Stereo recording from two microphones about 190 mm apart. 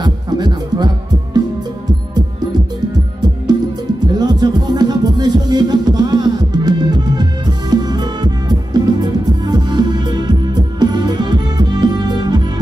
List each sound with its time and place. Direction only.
0.0 s music: 20° right (ahead or behind)
4.1 s music: 20° right (ahead or behind)